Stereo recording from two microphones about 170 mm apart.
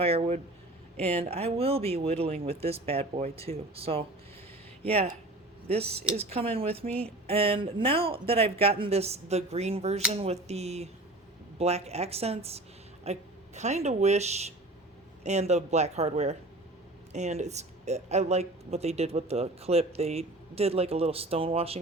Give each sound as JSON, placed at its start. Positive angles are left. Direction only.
{"t": 0.0, "sound": "speech", "side_deg": -35}